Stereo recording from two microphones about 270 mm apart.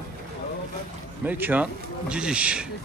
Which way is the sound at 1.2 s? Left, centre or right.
Centre.